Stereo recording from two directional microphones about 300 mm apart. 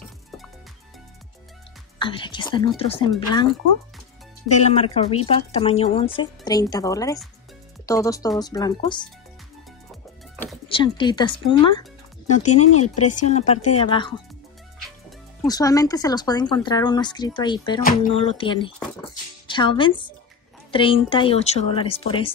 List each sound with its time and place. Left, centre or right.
2.0 s speech: centre
4.5 s speech: left
10.7 s speech: centre
12.5 s speech: left
13.3 s speech: left
15.4 s speech: centre